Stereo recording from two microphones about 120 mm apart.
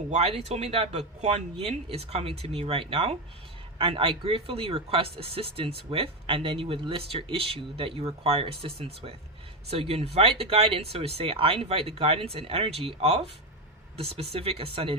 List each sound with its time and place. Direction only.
0.1 s speech: 55° right (ahead or behind)